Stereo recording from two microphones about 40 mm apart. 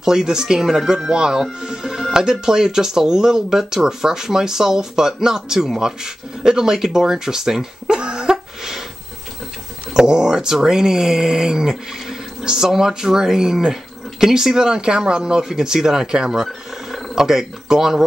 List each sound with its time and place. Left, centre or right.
0.0 s speech: centre
9.9 s speech: centre